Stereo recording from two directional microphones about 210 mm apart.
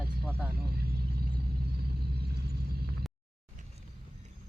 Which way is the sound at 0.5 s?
45° right (ahead or behind).